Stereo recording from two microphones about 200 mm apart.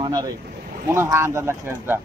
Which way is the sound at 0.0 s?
20° right (ahead or behind).